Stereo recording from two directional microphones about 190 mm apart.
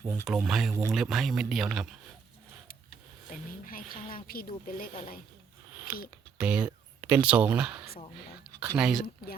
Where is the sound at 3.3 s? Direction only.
45° left (ahead or behind).